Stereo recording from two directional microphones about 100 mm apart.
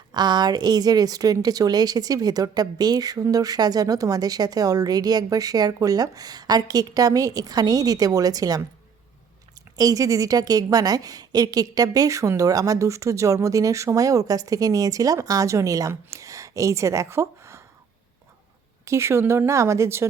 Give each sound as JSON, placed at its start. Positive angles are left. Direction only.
{"t": 0.1, "sound": "speech", "side_deg": -45}
{"t": 9.7, "sound": "speech", "side_deg": -35}
{"t": 18.9, "sound": "speech", "side_deg": -25}